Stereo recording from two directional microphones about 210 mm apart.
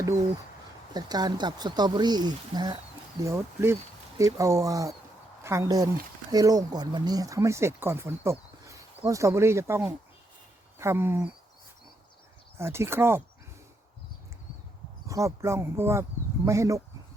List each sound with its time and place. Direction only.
0.9 s speech: 20° right (ahead or behind)
12.5 s speech: 10° right (ahead or behind)
15.0 s speech: 15° right (ahead or behind)